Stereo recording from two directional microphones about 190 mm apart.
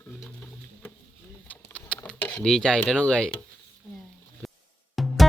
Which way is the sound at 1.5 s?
5° left (ahead or behind).